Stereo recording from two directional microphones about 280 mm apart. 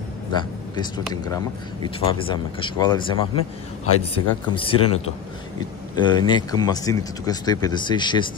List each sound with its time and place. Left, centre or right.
0.3 s speech: centre
3.8 s speech: left
4.6 s speech: centre